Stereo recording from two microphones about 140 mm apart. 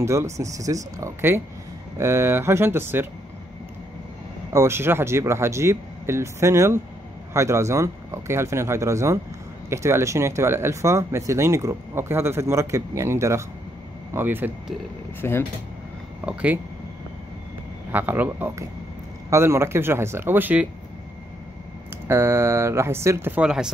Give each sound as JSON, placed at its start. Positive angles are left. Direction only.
{"t": 0.0, "sound": "speech", "side_deg": -20}
{"t": 4.5, "sound": "speech", "side_deg": -20}
{"t": 15.2, "sound": "speech", "side_deg": 15}
{"t": 16.3, "sound": "speech", "side_deg": -10}
{"t": 17.9, "sound": "speech", "side_deg": -10}
{"t": 22.0, "sound": "speech", "side_deg": -15}